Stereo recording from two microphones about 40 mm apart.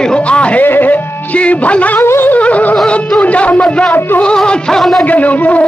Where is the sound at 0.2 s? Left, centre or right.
Left.